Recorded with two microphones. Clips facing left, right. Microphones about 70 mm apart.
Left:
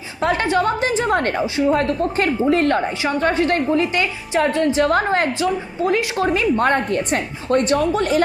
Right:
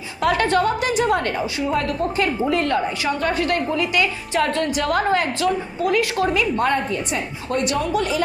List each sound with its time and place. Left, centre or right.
0.2 s a sound: left
0.6 s a woman's voice: left
1.4 s a woman's voice: left
1.7 s a woman's voice: left